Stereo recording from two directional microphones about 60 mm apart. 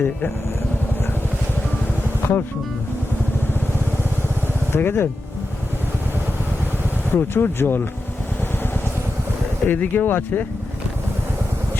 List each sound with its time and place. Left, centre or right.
2.2 s speech: left
4.7 s speech: left
7.1 s speech: left
9.6 s speech: left